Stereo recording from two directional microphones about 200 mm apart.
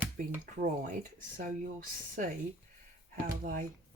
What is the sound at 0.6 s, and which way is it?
Speech, 40° right (ahead or behind).